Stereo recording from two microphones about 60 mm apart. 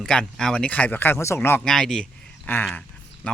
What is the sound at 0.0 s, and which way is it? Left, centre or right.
Speech, centre.